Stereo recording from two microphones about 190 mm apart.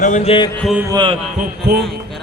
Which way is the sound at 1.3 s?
45° right (ahead or behind).